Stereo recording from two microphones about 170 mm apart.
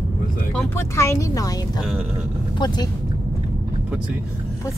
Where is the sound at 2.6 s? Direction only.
25° left (ahead or behind).